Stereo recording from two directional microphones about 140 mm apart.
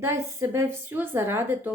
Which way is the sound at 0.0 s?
20° right (ahead or behind).